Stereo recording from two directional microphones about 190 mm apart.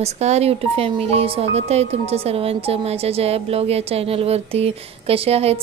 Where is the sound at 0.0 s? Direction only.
35° right (ahead or behind).